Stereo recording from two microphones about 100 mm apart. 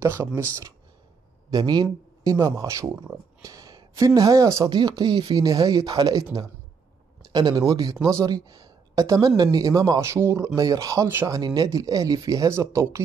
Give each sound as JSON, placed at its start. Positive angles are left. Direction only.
{"t": 0.0, "sound": "speech", "side_deg": -25}
{"t": 1.5, "sound": "speech", "side_deg": -40}
{"t": 4.6, "sound": "speech", "side_deg": -45}
{"t": 11.1, "sound": "speech", "side_deg": -25}
{"t": 11.3, "sound": "speech", "side_deg": -40}